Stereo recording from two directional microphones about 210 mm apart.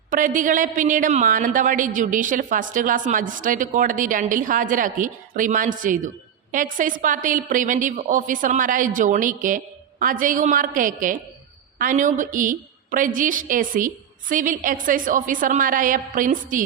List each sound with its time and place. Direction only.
0.1 s a woman's voice: 40° right (ahead or behind)